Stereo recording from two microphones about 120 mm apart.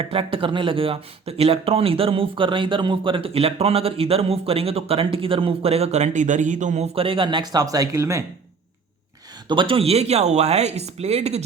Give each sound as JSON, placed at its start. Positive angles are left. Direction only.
{"t": 0.0, "sound": "speech", "side_deg": -50}
{"t": 9.5, "sound": "speech", "side_deg": -45}